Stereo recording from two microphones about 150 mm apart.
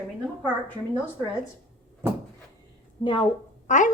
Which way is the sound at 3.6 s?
55° left (ahead or behind).